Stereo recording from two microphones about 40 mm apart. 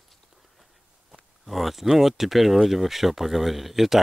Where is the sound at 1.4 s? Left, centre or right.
Centre.